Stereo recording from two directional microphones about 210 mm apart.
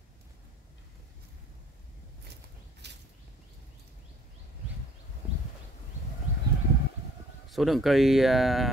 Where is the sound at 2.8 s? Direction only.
55° right (ahead or behind).